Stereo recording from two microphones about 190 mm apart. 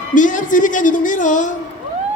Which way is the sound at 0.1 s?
45° left (ahead or behind).